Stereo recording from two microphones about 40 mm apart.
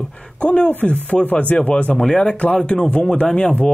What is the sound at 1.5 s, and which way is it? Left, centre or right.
Speech, left.